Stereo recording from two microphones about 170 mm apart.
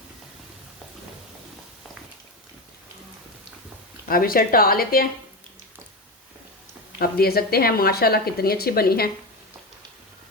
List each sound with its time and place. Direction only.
4.1 s speech: 55° left (ahead or behind)
7.0 s speech: 65° left (ahead or behind)